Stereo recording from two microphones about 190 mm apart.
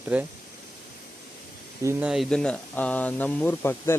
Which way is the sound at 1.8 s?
10° right (ahead or behind).